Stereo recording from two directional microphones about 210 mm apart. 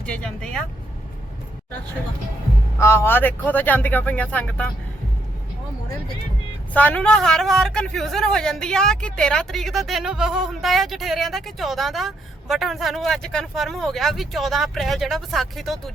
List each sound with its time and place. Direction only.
0.0 s vehicle: 5° left (ahead or behind)
2.7 s speech: 10° left (ahead or behind)
6.7 s a man's voice: 5° left (ahead or behind)